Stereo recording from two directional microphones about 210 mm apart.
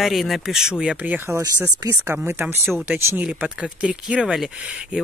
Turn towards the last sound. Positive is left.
turn(degrees=-5)  # may be behind; listen again after turning